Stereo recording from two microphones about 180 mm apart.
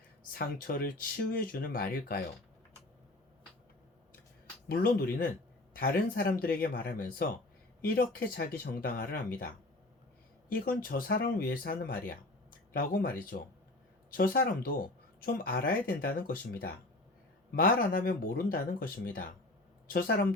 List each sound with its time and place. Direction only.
0.3 s speech: 55° left (ahead or behind)
4.7 s speech: 55° left (ahead or behind)
10.5 s speech: 55° left (ahead or behind)
14.2 s speech: 55° left (ahead or behind)